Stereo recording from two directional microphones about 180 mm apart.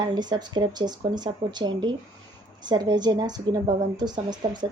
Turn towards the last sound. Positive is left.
turn(degrees=-25)  # may be behind; listen again after turning